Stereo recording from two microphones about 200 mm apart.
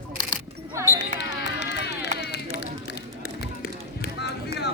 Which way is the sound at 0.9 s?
60° left (ahead or behind).